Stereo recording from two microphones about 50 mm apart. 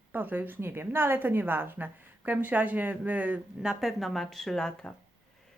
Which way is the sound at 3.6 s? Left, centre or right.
Centre.